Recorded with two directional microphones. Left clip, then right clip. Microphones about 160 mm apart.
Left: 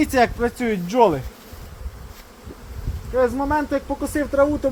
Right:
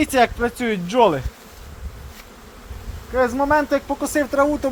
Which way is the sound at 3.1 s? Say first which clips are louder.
Right 2 dB; 50° right (ahead or behind).